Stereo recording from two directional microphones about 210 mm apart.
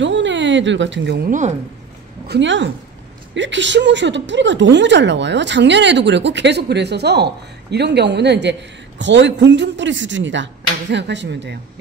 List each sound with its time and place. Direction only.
0.0 s a woman's voice: 60° right (ahead or behind)